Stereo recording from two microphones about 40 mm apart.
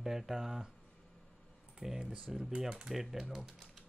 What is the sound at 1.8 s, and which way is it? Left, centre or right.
Speech, centre.